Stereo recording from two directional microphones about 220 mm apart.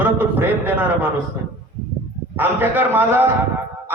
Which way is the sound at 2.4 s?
10° right (ahead or behind).